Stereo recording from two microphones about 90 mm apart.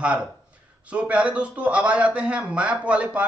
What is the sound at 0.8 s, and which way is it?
A man's voice, 15° right (ahead or behind).